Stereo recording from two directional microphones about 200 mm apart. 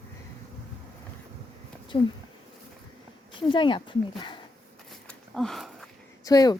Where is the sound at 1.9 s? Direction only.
30° left (ahead or behind).